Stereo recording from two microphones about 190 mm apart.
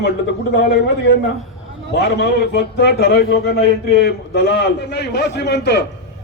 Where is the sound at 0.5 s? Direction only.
65° left (ahead or behind).